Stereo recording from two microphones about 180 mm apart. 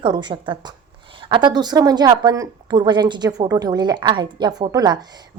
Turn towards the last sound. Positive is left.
turn(degrees=-20)  # may be behind; listen again after turning